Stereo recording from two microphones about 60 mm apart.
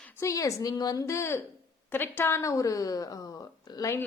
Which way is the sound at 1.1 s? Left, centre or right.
Left.